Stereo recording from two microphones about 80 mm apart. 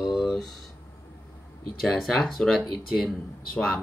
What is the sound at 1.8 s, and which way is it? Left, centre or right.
Speech, centre.